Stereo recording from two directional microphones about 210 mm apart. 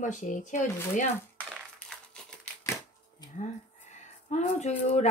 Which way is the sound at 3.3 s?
35° left (ahead or behind).